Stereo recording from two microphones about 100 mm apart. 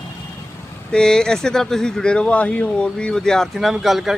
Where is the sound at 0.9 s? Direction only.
5° left (ahead or behind).